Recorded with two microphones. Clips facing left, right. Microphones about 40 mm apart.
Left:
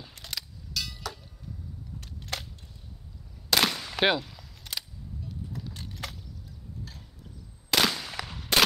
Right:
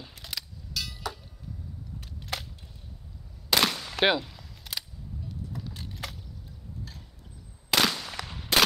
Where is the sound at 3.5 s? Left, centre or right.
Centre.